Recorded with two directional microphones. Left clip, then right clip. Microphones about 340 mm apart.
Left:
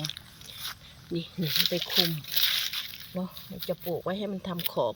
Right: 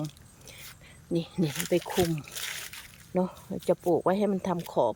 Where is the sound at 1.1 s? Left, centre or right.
Centre.